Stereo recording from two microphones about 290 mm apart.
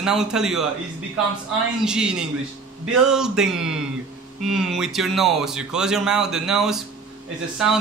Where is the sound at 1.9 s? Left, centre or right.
Centre.